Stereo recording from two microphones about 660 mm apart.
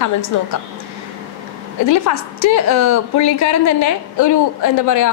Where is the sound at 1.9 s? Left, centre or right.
Left.